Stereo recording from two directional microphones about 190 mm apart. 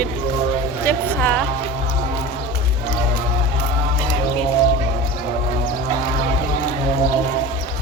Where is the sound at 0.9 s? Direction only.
10° left (ahead or behind).